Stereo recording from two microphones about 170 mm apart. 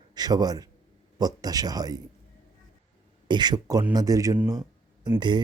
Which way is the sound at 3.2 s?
25° right (ahead or behind).